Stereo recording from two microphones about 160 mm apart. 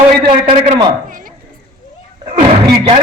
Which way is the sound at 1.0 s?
60° right (ahead or behind).